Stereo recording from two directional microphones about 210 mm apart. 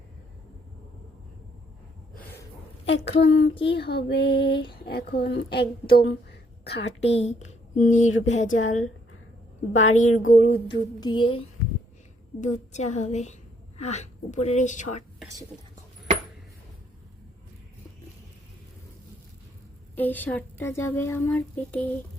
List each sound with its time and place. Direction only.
2.8 s a woman's voice: 55° left (ahead or behind)
3.2 s a sound: 55° left (ahead or behind)
3.7 s child singing: 50° left (ahead or behind)
6.1 s a sound: 55° left (ahead or behind)
7.0 s a woman's voice: 30° left (ahead or behind)
8.4 s a woman's voice: 70° left (ahead or behind)
10.7 s speech: 20° left (ahead or behind)
12.4 s a woman's voice: 35° left (ahead or behind)
20.0 s a woman's voice: 10° left (ahead or behind)